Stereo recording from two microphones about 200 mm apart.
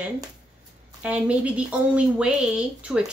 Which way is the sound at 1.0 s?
5° right (ahead or behind).